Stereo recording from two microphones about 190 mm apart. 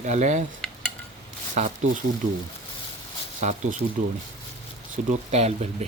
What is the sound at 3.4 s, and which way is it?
Speech, 40° right (ahead or behind).